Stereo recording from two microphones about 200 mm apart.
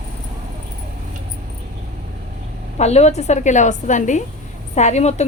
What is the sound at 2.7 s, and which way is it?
A woman's voice, 35° left (ahead or behind).